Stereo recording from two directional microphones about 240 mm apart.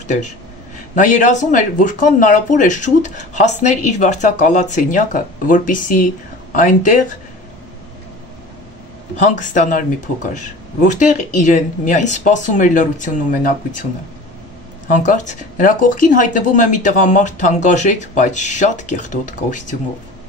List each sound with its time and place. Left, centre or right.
0.9 s speech: left
9.2 s speech: left
14.9 s speech: left